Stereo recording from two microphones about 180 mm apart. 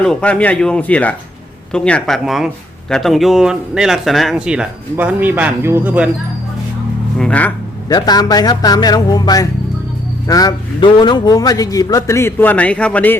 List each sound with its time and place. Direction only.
0.0 s a man's voice: 5° left (ahead or behind)
7.2 s a man's voice: 5° left (ahead or behind)
7.9 s a man's voice: 20° left (ahead or behind)